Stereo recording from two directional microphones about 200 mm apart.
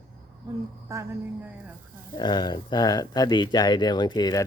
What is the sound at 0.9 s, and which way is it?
Speech, 15° right (ahead or behind).